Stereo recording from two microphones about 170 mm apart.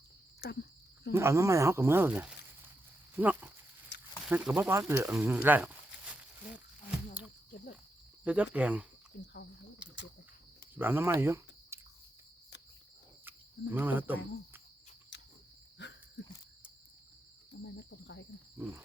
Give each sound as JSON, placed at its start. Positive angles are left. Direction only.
{"t": 0.4, "sound": "cricket", "side_deg": 75}
{"t": 1.1, "sound": "speech", "side_deg": -15}
{"t": 3.9, "sound": "a sound", "side_deg": 80}
{"t": 4.3, "sound": "speech", "side_deg": -10}
{"t": 8.2, "sound": "speech", "side_deg": -10}
{"t": 9.2, "sound": "cricket", "side_deg": 90}
{"t": 9.8, "sound": "cricket", "side_deg": -5}
{"t": 10.8, "sound": "speech", "side_deg": -10}
{"t": 13.2, "sound": "cricket", "side_deg": -10}
{"t": 15.1, "sound": "a sound", "side_deg": 90}
{"t": 15.8, "sound": "dog", "side_deg": 90}
{"t": 16.2, "sound": "cricket", "side_deg": 90}
{"t": 17.7, "sound": "cricket", "side_deg": 90}
{"t": 18.5, "sound": "a sound", "side_deg": -10}